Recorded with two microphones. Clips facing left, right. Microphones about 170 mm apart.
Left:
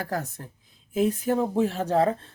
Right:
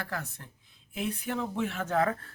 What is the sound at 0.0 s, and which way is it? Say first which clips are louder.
Speech: left 7 dB; 45° left (ahead or behind).